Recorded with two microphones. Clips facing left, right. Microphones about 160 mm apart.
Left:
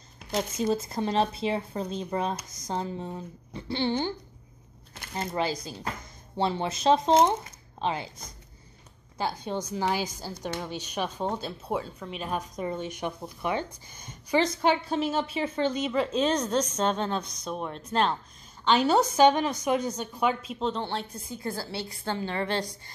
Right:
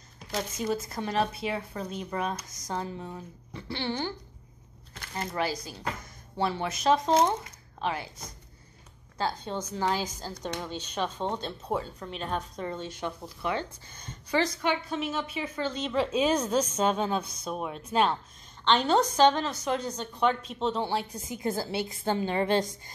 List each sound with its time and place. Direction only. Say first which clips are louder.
0.3 s speech: left 3 dB; 25° left (ahead or behind)
5.1 s speech: left 2 dB; 25° left (ahead or behind)
9.2 s a woman's voice: left 1 dB; 15° left (ahead or behind)
14.4 s a woman's voice: left 5 dB; 30° left (ahead or behind)
15.9 s a woman's voice: even; centre (ahead or behind)
18.6 s a woman's voice: left 1 dB; 5° left (ahead or behind); by 22.7 s 20° right (ahead or behind)